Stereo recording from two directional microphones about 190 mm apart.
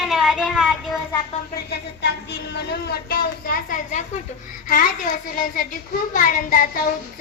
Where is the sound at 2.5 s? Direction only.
60° left (ahead or behind).